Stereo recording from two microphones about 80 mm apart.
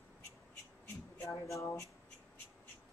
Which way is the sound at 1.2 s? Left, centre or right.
Left.